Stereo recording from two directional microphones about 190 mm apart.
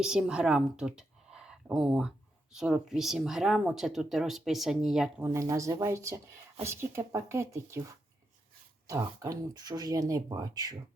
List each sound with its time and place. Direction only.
0.0 s a woman's voice: 5° right (ahead or behind)
5.3 s speech: 15° right (ahead or behind)
8.9 s speech: 15° right (ahead or behind)